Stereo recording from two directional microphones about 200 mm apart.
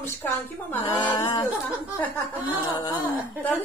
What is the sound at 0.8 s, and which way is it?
Speech, 20° left (ahead or behind).